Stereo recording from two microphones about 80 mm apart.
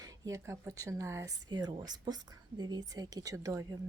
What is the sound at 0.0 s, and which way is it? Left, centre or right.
A woman's voice, right.